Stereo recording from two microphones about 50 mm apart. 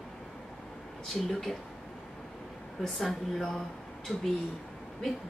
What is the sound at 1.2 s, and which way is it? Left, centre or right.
Speech, centre.